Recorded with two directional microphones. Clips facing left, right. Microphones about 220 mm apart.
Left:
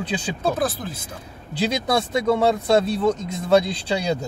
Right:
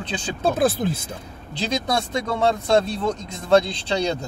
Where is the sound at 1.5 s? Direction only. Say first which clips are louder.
Left 2 dB; 5° left (ahead or behind).